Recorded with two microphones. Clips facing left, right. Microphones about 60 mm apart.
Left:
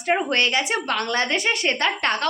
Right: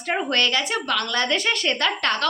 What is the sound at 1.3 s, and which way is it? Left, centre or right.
Speech, centre.